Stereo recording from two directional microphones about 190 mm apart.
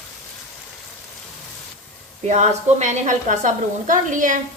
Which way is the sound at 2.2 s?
40° right (ahead or behind).